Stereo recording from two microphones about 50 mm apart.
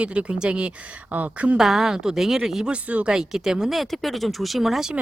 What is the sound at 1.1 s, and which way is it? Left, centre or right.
Speech, right.